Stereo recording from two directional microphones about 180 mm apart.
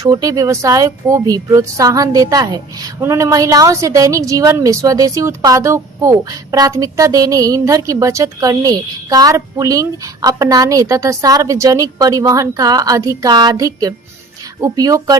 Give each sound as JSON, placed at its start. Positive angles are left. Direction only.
{"t": 0.0, "sound": "speech", "side_deg": -20}